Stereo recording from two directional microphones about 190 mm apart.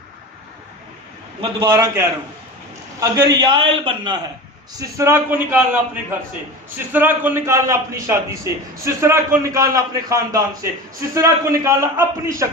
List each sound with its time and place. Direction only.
1.4 s a man's voice: 25° right (ahead or behind)
4.8 s a man's voice: 15° right (ahead or behind)